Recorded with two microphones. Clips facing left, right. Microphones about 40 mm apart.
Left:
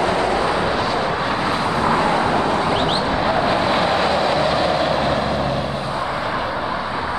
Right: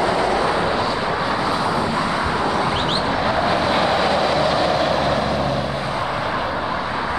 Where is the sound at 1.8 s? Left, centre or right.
Left.